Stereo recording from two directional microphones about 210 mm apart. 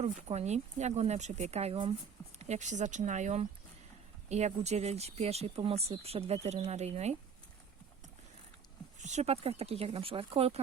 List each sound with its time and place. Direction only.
0.0 s speech: 30° right (ahead or behind)
9.0 s speech: 35° right (ahead or behind)